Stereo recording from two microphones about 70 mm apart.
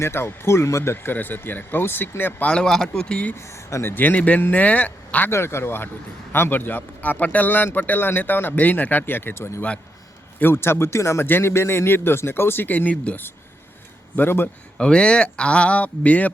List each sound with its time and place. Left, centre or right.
0.0 s speech: left
1.1 s speech: left
2.5 s speech: centre
3.3 s speech: left
3.9 s speech: left
5.3 s speech: left
14.8 s speech: centre